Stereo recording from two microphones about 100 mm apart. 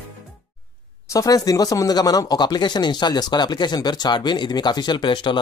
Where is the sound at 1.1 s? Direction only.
35° left (ahead or behind).